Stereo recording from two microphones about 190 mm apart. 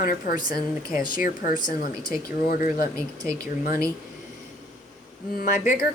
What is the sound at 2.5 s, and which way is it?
Speech, 50° left (ahead or behind).